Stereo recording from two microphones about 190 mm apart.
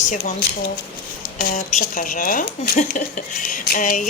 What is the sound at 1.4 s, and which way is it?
A woman's voice, 45° left (ahead or behind).